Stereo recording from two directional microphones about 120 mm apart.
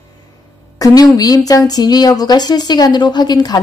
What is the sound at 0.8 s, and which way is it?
A woman's voice, 30° left (ahead or behind).